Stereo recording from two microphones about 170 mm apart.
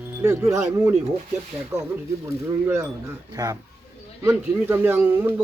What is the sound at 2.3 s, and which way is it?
A man's voice, 15° right (ahead or behind).